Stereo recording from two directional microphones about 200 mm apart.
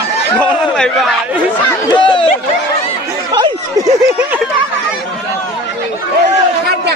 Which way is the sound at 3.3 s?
20° right (ahead or behind).